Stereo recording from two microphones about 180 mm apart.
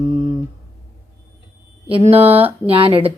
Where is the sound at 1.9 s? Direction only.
30° right (ahead or behind).